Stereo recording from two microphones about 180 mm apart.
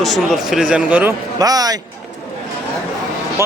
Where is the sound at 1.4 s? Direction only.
20° right (ahead or behind).